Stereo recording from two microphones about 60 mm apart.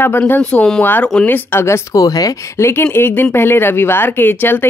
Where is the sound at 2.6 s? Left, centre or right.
Left.